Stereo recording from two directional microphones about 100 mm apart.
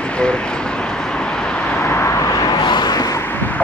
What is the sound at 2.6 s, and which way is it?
Vehicle, 50° left (ahead or behind).